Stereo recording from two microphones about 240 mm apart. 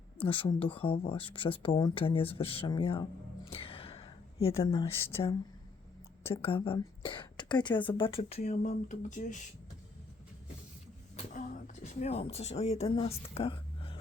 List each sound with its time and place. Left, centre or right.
0.2 s a woman's voice: left
3.5 s a sound: left
5.0 s a woman's voice: left
11.3 s speech: left